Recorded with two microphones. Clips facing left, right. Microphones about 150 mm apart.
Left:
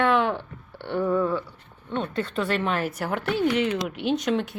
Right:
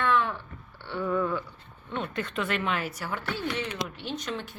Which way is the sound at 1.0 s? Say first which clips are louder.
Left 4 dB; 10° left (ahead or behind).